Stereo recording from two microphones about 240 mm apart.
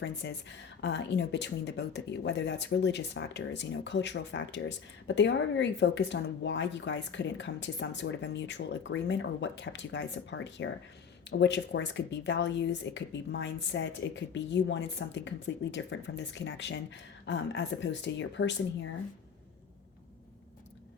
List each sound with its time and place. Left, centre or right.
0.0 s a woman's voice: left